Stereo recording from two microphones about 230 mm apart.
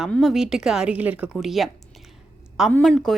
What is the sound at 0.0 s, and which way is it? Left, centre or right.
A woman's voice, centre.